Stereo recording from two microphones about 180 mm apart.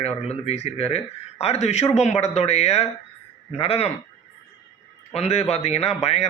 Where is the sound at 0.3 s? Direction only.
35° left (ahead or behind).